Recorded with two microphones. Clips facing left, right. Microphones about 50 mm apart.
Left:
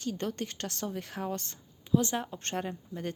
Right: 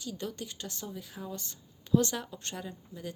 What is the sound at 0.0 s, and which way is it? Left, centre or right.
Speech, left.